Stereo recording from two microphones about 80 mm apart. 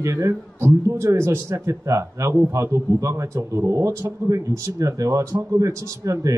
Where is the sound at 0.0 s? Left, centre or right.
Right.